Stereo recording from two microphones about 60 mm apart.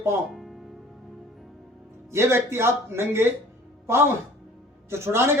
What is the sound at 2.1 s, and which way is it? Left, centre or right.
Speech, right.